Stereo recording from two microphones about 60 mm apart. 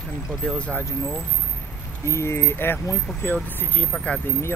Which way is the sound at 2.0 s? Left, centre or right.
Left.